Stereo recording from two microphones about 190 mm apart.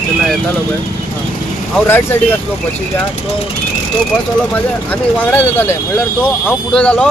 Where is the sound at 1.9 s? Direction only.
10° left (ahead or behind).